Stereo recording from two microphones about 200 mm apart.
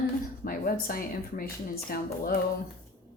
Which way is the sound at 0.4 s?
45° left (ahead or behind).